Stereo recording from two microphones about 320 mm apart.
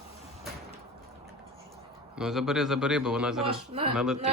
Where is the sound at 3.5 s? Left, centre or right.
Centre.